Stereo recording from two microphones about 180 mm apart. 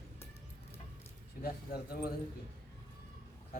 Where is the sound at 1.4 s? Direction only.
60° left (ahead or behind).